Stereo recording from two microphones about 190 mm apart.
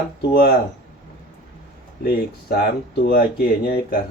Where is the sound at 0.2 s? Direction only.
60° left (ahead or behind).